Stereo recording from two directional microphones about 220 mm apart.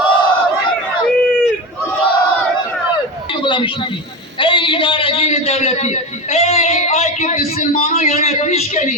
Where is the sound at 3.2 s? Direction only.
20° left (ahead or behind).